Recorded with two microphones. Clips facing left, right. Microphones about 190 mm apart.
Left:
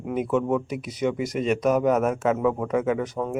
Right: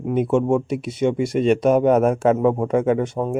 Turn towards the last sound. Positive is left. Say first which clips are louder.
# right 5 dB
turn(degrees=-25)  # may be behind; listen again after turning